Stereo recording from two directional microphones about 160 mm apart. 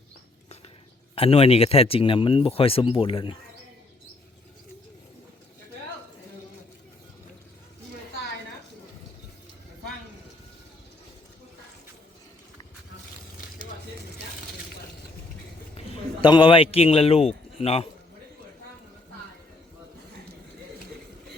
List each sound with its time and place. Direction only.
1.1 s speech: 35° left (ahead or behind)
16.2 s speech: 30° left (ahead or behind)